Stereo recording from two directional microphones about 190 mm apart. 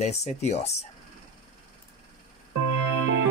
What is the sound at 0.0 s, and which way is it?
Speech, 35° left (ahead or behind).